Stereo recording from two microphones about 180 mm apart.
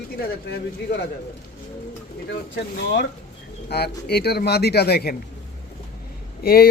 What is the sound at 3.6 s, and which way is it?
Speech, 65° left (ahead or behind).